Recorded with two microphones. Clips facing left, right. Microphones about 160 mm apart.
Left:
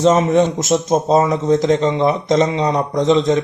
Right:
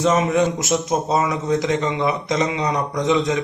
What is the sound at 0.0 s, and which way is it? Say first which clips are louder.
A man's voice: left 4 dB; 30° left (ahead or behind).